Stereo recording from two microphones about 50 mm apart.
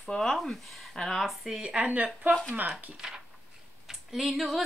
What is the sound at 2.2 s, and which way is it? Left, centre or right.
Speech, right.